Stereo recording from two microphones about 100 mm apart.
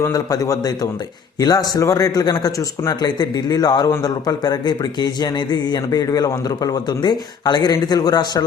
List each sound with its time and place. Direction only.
0.0 s speech: 35° left (ahead or behind)